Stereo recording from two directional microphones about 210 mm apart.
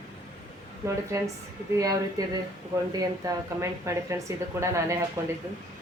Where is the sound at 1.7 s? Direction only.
15° right (ahead or behind).